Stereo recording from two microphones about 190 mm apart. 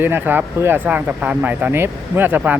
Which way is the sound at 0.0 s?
10° right (ahead or behind).